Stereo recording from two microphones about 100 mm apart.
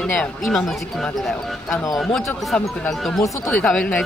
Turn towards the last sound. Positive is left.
turn(degrees=5)  # may be behind; listen again after turning